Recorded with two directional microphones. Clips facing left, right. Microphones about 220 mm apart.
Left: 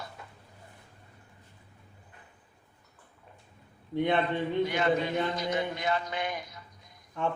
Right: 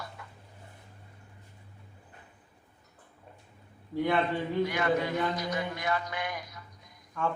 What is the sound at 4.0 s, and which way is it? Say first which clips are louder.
A man's voice: left 1 dB; 25° left (ahead or behind).